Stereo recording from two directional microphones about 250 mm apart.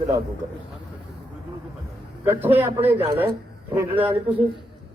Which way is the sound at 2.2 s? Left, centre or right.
Centre.